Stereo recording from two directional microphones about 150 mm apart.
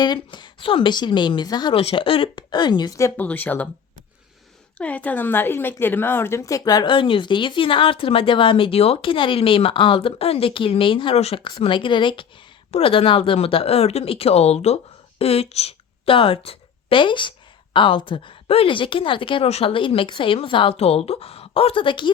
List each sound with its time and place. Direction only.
0.0 s a woman's voice: 30° left (ahead or behind)
1.8 s a woman's voice: 40° left (ahead or behind)
3.2 s speech: 10° left (ahead or behind)
4.8 s a woman's voice: 10° left (ahead or behind); by 22.1 s 35° left (ahead or behind)